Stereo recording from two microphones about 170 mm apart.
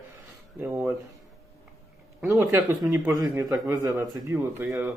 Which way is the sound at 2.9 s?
10° right (ahead or behind).